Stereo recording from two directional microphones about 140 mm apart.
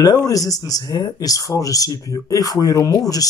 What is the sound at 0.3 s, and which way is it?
Speech, 25° left (ahead or behind).